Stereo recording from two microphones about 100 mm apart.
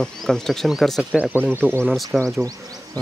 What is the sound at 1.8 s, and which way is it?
Speech, centre (ahead or behind).